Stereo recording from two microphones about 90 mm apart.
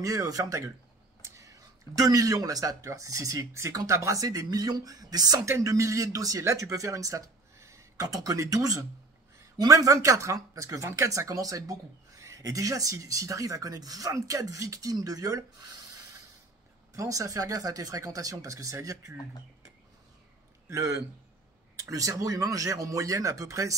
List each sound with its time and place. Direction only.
0.0 s speech: 40° right (ahead or behind)
1.2 s a sound: 35° right (ahead or behind)
2.0 s speech: 40° right (ahead or behind)
16.9 s speech: 40° right (ahead or behind)
20.7 s speech: 40° right (ahead or behind)